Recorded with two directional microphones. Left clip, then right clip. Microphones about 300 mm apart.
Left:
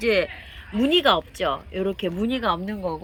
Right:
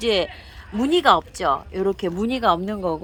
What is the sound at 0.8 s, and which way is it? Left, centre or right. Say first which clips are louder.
Speech: right 2 dB; right.